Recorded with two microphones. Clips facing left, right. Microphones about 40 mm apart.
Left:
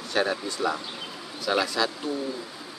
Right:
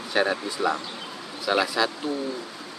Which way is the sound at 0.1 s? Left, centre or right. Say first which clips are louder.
Right 2 dB; centre.